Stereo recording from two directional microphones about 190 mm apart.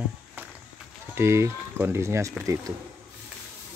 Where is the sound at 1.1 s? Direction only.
15° right (ahead or behind).